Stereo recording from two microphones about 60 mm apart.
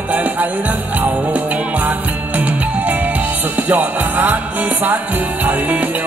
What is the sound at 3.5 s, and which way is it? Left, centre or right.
Music, right.